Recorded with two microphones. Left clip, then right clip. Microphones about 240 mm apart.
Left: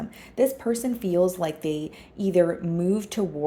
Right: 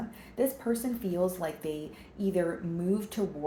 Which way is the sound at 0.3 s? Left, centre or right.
Left.